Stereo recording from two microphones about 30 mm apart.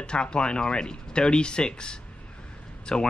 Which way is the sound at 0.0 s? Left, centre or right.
Left.